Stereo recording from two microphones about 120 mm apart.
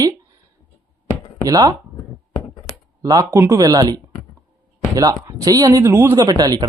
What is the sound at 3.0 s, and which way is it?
Speech, 30° right (ahead or behind).